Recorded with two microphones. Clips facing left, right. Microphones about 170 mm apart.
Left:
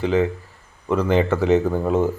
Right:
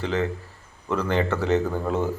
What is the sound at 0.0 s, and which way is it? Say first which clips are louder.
Speech: left 6 dB; 15° left (ahead or behind).